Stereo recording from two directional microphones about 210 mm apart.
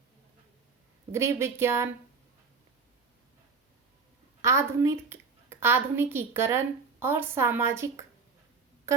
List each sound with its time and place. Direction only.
1.1 s a woman's voice: 15° right (ahead or behind)
4.4 s a woman's voice: 15° right (ahead or behind)
8.9 s a sound: 15° right (ahead or behind)